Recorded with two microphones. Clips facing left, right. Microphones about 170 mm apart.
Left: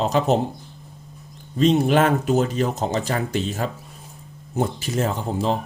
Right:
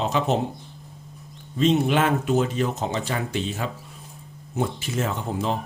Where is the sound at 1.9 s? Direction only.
40° left (ahead or behind).